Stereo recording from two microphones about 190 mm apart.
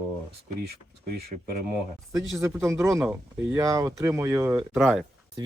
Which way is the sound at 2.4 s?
15° right (ahead or behind).